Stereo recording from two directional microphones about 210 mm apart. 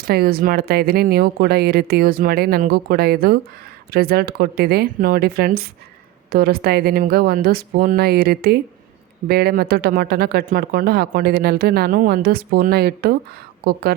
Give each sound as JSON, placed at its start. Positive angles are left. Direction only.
{"t": 0.1, "sound": "speech", "side_deg": -45}